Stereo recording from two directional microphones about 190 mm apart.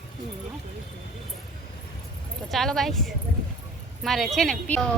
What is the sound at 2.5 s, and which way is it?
A woman's voice, centre (ahead or behind).